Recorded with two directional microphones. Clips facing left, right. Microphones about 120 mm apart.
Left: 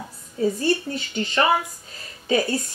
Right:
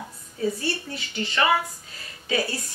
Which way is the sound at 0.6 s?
35° left (ahead or behind).